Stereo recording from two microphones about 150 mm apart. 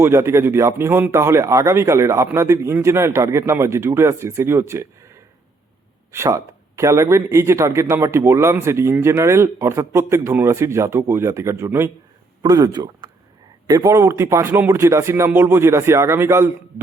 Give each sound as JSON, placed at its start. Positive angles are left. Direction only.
{"t": 0.0, "sound": "speech", "side_deg": -15}